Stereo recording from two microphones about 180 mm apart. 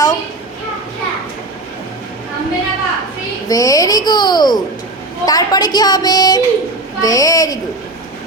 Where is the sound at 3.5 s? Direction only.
20° left (ahead or behind).